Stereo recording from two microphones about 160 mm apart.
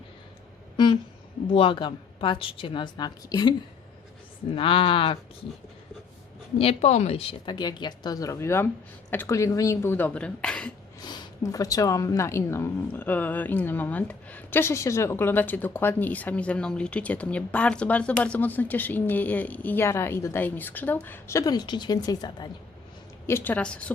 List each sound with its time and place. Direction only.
1.5 s a woman's voice: 35° left (ahead or behind)
4.5 s a woman's voice: 35° left (ahead or behind)
6.6 s a woman's voice: 40° left (ahead or behind); by 10.7 s 5° left (ahead or behind)
11.0 s a woman's voice: 25° left (ahead or behind)
23.2 s a woman's voice: 15° left (ahead or behind)